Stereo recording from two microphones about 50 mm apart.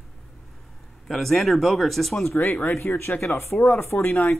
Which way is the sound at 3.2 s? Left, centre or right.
Left.